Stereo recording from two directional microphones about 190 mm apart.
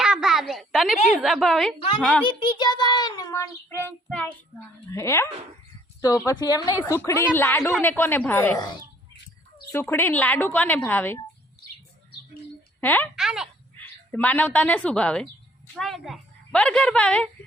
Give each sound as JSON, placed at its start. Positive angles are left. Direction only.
{"t": 0.0, "sound": "a sound", "side_deg": -5}
{"t": 1.1, "sound": "a woman's voice", "side_deg": 0}
{"t": 2.2, "sound": "child singing", "side_deg": 25}
{"t": 4.9, "sound": "a woman's voice", "side_deg": 15}
{"t": 6.4, "sound": "child singing", "side_deg": 20}
{"t": 6.8, "sound": "a woman's voice", "side_deg": 15}
{"t": 12.8, "sound": "a woman's voice", "side_deg": 10}
{"t": 13.1, "sound": "a woman's voice", "side_deg": -5}
{"t": 13.7, "sound": "a woman's voice", "side_deg": 10}